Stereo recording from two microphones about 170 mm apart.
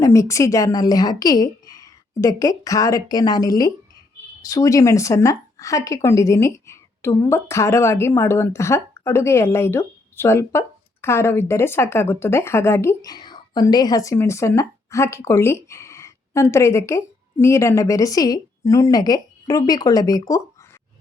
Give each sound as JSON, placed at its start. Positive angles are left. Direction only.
{"t": 0.0, "sound": "a woman's voice", "side_deg": 15}